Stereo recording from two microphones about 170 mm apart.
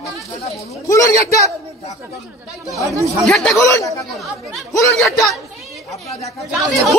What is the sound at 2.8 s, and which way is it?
Speech, 20° right (ahead or behind).